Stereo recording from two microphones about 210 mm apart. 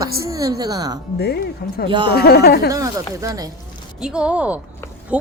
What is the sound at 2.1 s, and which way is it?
Speech, 50° left (ahead or behind).